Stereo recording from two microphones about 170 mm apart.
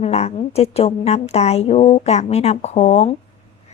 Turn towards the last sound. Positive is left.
turn(degrees=40)  # may be behind; listen again after turning